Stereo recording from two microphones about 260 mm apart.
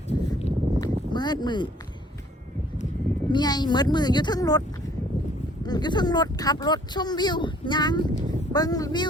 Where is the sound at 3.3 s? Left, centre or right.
Centre.